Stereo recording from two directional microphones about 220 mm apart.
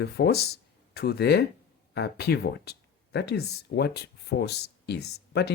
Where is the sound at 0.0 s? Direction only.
45° left (ahead or behind).